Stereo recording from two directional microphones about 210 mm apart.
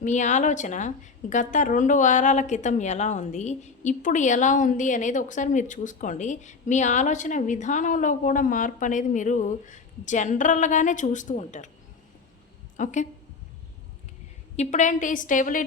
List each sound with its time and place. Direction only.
0.0 s a woman's voice: 35° left (ahead or behind)
12.7 s a woman's voice: 35° left (ahead or behind)
14.5 s a woman's voice: 35° left (ahead or behind)